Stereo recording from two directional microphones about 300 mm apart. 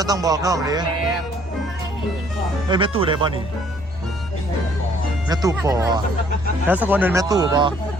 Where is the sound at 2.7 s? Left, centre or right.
Centre.